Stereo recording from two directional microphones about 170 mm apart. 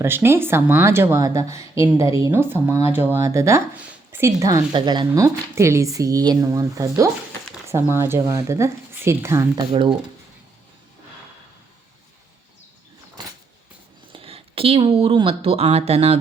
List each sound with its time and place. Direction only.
0.0 s speech: 15° right (ahead or behind)
14.1 s speech: 35° right (ahead or behind)